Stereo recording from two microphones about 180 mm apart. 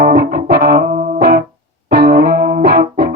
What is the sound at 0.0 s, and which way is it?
Music, 60° right (ahead or behind).